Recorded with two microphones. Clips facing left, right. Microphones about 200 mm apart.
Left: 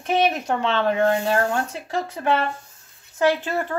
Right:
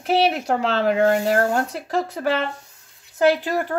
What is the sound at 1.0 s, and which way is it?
Speech, 45° right (ahead or behind).